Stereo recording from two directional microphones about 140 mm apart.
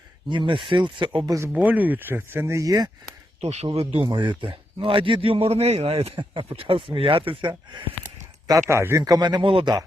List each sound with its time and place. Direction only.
0.3 s a man's voice: 35° right (ahead or behind)
1.5 s speech: 10° right (ahead or behind)
3.4 s speech: 50° right (ahead or behind)
4.1 s a man's voice: 35° right (ahead or behind)
8.4 s a man's voice: 20° right (ahead or behind)